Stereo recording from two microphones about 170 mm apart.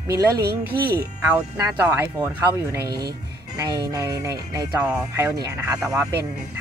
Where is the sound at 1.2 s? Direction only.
10° right (ahead or behind).